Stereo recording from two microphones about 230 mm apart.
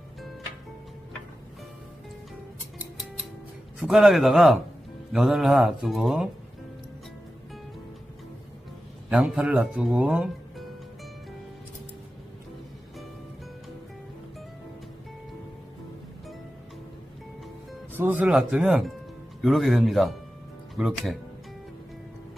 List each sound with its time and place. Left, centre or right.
3.8 s speech: centre
9.1 s speech: centre
17.9 s speech: centre